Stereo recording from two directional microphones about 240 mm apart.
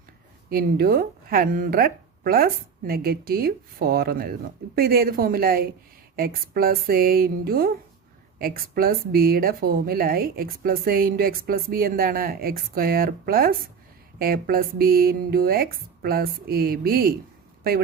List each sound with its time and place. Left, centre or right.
0.5 s a man's voice: right